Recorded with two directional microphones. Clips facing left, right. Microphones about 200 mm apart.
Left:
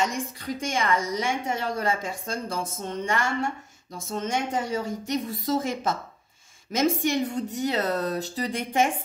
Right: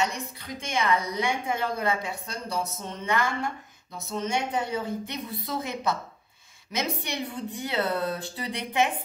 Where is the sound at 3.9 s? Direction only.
50° left (ahead or behind).